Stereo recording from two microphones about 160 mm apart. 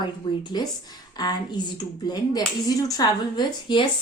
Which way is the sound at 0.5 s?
25° left (ahead or behind).